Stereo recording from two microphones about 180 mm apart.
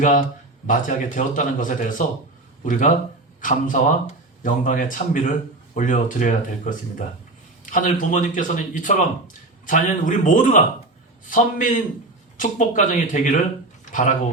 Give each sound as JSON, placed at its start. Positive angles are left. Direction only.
{"t": 0.7, "sound": "speech", "side_deg": 45}